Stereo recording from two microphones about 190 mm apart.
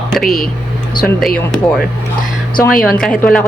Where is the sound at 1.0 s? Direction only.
5° left (ahead or behind).